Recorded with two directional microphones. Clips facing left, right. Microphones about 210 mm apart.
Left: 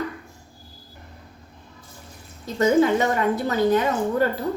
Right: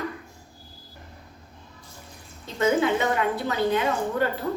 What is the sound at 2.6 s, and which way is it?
A woman's voice, 40° left (ahead or behind).